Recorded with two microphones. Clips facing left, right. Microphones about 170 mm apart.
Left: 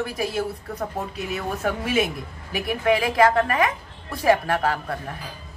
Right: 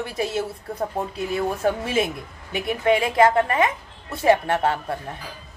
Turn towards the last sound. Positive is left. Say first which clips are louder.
# right 1 dB
turn(degrees=-25)  # may be behind; listen again after turning